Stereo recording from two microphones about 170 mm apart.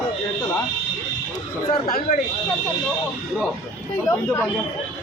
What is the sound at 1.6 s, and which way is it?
Speech, 40° left (ahead or behind).